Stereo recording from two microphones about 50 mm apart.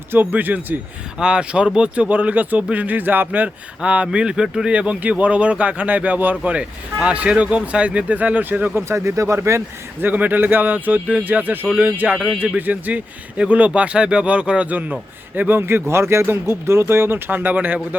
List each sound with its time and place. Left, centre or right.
0.1 s speech: right
1.2 s speech: right
2.0 s speech: right
3.8 s speech: right
4.7 s speech: right
8.9 s speech: right
9.4 s speech: right
10.0 s speech: right
15.4 s speech: right
15.6 s speech: right